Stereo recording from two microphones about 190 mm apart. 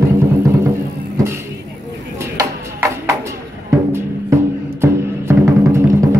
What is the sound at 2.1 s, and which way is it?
Music, 15° right (ahead or behind).